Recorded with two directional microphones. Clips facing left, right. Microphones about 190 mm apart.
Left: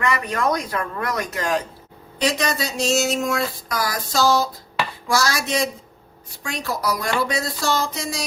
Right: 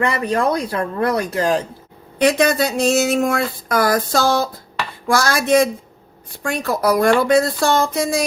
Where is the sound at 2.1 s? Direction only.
55° right (ahead or behind).